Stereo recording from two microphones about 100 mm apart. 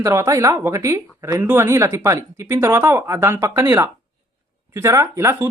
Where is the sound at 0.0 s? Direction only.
30° right (ahead or behind).